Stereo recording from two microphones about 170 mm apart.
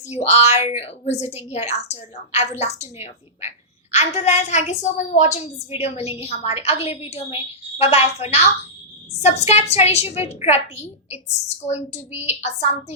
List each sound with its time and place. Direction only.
0.0 s a woman's voice: 40° left (ahead or behind)